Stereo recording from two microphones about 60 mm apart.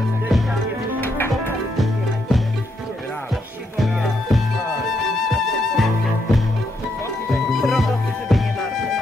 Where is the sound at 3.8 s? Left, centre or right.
Centre.